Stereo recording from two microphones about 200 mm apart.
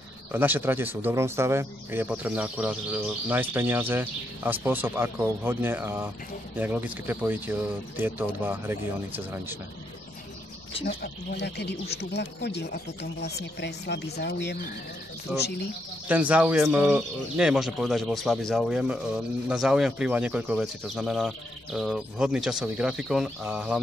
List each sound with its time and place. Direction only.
0.3 s speech: 10° right (ahead or behind)
10.9 s speech: 55° left (ahead or behind)
16.1 s speech: 5° right (ahead or behind)